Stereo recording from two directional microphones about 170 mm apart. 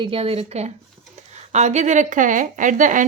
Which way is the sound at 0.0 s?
35° right (ahead or behind).